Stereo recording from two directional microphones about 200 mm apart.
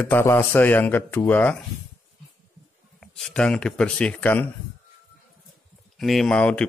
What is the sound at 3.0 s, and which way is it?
Speech, centre (ahead or behind).